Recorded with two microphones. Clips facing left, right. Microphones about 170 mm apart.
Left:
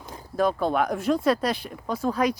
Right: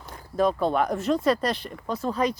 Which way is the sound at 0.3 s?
Centre (ahead or behind).